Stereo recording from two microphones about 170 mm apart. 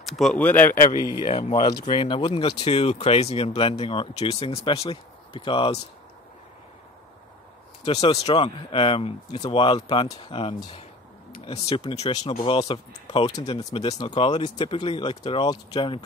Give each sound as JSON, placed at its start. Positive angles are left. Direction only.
{"t": 0.0, "sound": "speech", "side_deg": 0}
{"t": 0.9, "sound": "speech", "side_deg": -20}
{"t": 1.2, "sound": "speech", "side_deg": 30}
{"t": 7.8, "sound": "speech", "side_deg": 35}
{"t": 12.1, "sound": "speech", "side_deg": 25}
{"t": 13.8, "sound": "speech", "side_deg": 25}